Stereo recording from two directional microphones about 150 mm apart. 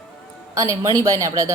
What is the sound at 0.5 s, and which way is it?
Speech, 20° right (ahead or behind).